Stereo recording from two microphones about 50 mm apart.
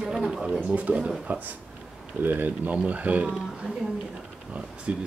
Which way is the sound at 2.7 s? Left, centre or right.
Right.